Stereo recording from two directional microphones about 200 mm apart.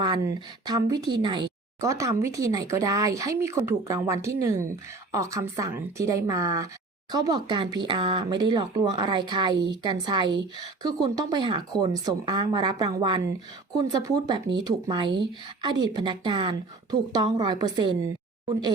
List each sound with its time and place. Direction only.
0.0 s a woman's voice: 20° right (ahead or behind)